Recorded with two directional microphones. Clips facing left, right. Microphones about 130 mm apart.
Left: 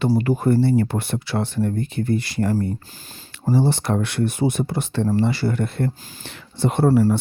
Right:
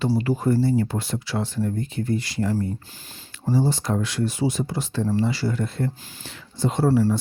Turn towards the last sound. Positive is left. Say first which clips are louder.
# left 3 dB
turn(degrees=50)  # may be behind; listen again after turning